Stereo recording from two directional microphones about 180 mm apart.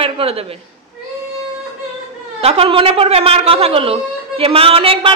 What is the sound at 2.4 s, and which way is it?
A man's voice, 30° right (ahead or behind).